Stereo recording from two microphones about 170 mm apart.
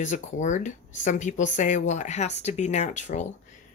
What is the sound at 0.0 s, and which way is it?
Speech, 45° left (ahead or behind).